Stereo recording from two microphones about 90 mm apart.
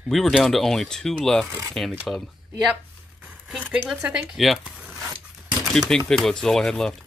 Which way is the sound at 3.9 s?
10° right (ahead or behind).